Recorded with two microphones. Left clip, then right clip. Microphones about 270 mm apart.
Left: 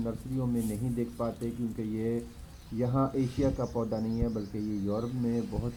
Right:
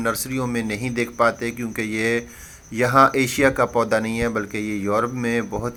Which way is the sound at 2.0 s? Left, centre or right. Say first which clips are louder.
Right 13 dB; right.